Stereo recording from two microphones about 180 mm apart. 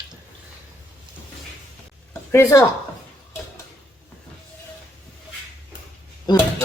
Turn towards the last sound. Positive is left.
turn(degrees=25)  # may be behind; listen again after turning